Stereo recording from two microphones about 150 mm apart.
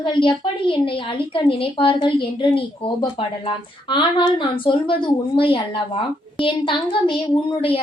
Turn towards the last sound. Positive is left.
turn(degrees=35)  # may be behind; listen again after turning